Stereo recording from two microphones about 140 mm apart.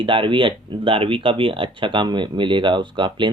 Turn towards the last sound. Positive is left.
turn(degrees=-35)  # may be behind; listen again after turning